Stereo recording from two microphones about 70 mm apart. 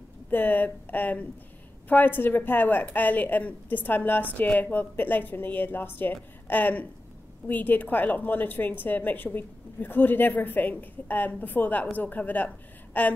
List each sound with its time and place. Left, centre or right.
0.3 s a woman's voice: left